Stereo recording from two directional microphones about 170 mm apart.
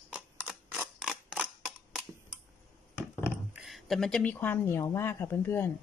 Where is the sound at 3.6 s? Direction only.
Centre (ahead or behind).